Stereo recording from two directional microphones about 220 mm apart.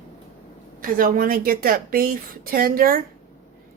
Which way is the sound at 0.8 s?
40° right (ahead or behind).